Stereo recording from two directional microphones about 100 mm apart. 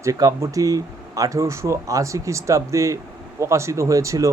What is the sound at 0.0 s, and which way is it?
Speech, 35° right (ahead or behind).